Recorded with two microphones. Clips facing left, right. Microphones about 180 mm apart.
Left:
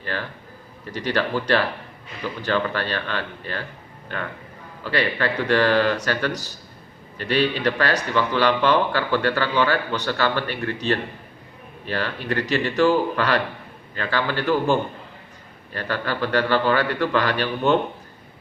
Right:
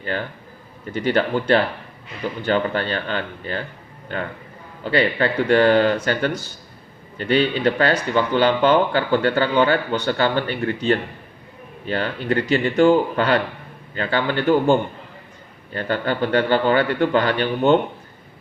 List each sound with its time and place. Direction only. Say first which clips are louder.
0.0 s a man's voice: right 3 dB; 25° right (ahead or behind)
4.8 s a man's voice: right 4 dB; 25° right (ahead or behind)
7.2 s a man's voice: right 3 dB; 25° right (ahead or behind)